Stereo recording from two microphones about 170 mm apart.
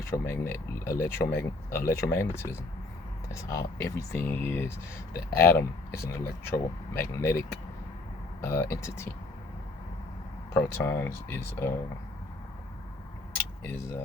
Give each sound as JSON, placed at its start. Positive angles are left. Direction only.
{"t": 0.0, "sound": "speech", "side_deg": 15}
{"t": 8.4, "sound": "speech", "side_deg": 15}
{"t": 10.5, "sound": "speech", "side_deg": 15}
{"t": 13.3, "sound": "a sound", "side_deg": 15}